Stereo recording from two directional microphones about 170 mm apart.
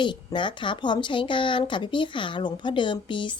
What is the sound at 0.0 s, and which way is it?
A woman's voice, 25° left (ahead or behind).